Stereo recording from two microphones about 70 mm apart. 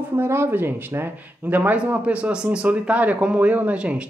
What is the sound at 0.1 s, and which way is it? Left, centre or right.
Speech, right.